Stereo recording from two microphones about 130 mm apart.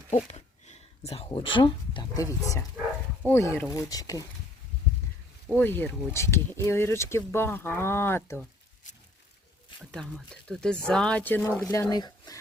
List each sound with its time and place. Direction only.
0.1 s speech: 60° left (ahead or behind); by 2.0 s 40° left (ahead or behind)
2.1 s speech: 25° left (ahead or behind)
5.5 s speech: 15° left (ahead or behind)
9.9 s speech: 5° left (ahead or behind)
11.7 s speech: 25° left (ahead or behind)